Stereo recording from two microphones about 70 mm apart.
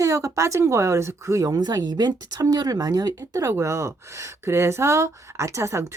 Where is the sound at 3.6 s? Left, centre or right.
Right.